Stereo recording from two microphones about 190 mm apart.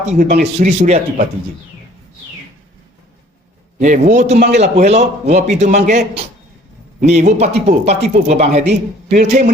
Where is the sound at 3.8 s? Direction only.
40° right (ahead or behind).